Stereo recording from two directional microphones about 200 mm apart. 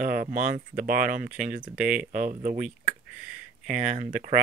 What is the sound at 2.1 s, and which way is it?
Speech, 40° right (ahead or behind).